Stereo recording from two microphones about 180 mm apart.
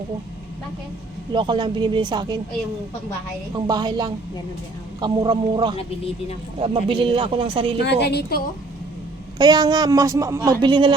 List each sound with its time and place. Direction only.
1.3 s speech: 25° right (ahead or behind)
3.5 s speech: 25° right (ahead or behind)
7.9 s a woman's voice: 65° left (ahead or behind)
9.4 s speech: 25° right (ahead or behind)